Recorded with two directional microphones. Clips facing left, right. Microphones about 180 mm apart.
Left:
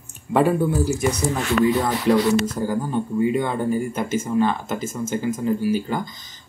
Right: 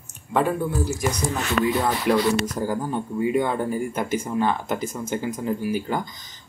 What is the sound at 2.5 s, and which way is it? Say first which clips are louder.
Speech: left 2 dB; 15° right (ahead or behind).